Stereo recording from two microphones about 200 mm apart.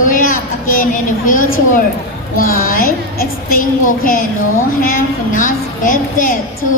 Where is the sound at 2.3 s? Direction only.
45° left (ahead or behind).